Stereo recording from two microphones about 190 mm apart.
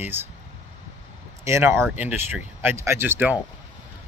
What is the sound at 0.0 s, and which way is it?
Speech, 10° right (ahead or behind).